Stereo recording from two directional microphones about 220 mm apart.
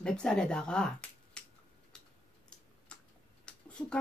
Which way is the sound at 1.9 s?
5° left (ahead or behind).